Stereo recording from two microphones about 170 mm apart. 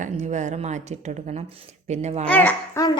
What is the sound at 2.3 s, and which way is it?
Speech, 10° left (ahead or behind).